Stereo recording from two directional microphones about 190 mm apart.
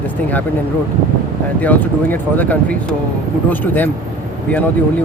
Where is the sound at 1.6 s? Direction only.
10° left (ahead or behind).